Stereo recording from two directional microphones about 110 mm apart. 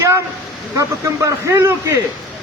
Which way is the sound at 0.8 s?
25° right (ahead or behind).